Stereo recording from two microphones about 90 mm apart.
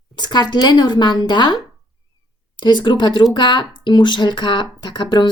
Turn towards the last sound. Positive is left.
turn(degrees=55)  # may be behind; listen again after turning